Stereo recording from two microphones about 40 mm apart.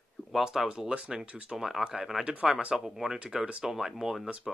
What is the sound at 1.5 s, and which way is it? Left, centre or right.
Speech, centre.